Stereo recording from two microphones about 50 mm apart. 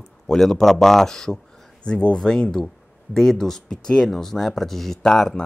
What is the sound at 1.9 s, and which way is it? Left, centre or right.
Speech, left.